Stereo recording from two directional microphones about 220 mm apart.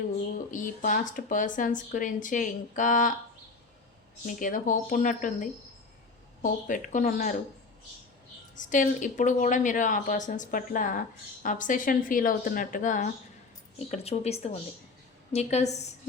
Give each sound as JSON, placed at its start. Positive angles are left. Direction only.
{"t": 0.5, "sound": "speech", "side_deg": 35}
{"t": 4.3, "sound": "speech", "side_deg": 40}
{"t": 8.5, "sound": "speech", "side_deg": 35}